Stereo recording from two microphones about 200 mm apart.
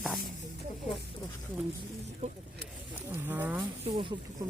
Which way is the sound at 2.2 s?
35° right (ahead or behind).